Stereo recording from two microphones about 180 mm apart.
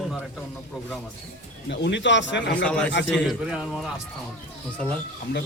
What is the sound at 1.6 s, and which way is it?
Speech, 80° left.